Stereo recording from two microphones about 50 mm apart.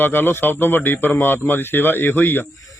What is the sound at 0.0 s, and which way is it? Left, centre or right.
A man's voice, left.